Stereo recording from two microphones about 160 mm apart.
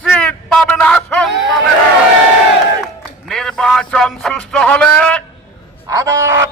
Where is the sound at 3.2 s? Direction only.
5° left (ahead or behind).